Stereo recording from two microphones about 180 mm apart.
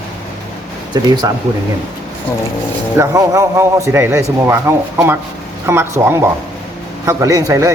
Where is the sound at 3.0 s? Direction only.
15° right (ahead or behind).